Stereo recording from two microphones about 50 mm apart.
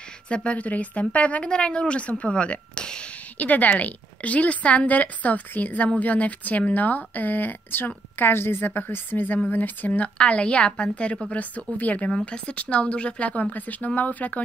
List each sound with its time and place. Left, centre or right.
0.3 s a woman's voice: left
3.3 s a woman's voice: left
12.1 s a woman's voice: centre